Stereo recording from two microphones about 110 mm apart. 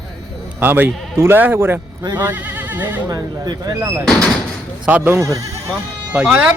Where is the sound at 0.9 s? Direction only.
Centre (ahead or behind).